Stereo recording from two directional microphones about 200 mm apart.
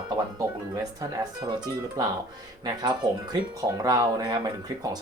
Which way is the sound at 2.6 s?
20° right (ahead or behind).